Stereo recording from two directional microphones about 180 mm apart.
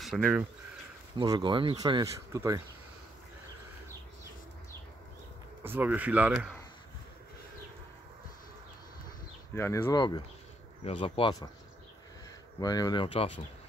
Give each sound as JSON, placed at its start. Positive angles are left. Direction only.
{"t": 0.0, "sound": "speech", "side_deg": 0}
{"t": 1.1, "sound": "speech", "side_deg": -25}
{"t": 5.6, "sound": "speech", "side_deg": -10}
{"t": 9.6, "sound": "speech", "side_deg": 15}
{"t": 12.5, "sound": "speech", "side_deg": 20}